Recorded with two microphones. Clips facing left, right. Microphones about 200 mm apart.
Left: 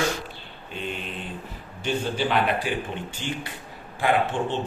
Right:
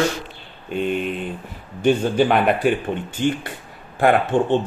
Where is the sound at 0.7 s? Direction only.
55° right (ahead or behind).